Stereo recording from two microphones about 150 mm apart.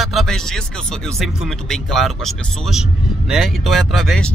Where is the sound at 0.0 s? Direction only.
Centre (ahead or behind).